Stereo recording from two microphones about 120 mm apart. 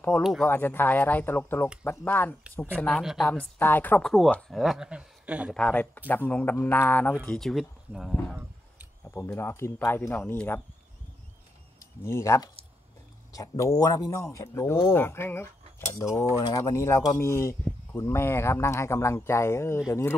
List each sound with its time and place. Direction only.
0.2 s speech: centre (ahead or behind)
0.5 s speech: 15° left (ahead or behind)
2.8 s speech: centre (ahead or behind)
3.2 s speech: 10° left (ahead or behind)
4.0 s speech: centre (ahead or behind)
5.5 s speech: 10° left (ahead or behind)
7.2 s speech: 5° left (ahead or behind)
9.1 s speech: 20° left (ahead or behind)
11.8 s speech: 20° left (ahead or behind)
16.3 s speech: 35° left (ahead or behind)
16.6 s speech: 20° left (ahead or behind)